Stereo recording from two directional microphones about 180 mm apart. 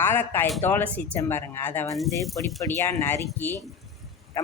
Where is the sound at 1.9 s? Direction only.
Centre (ahead or behind).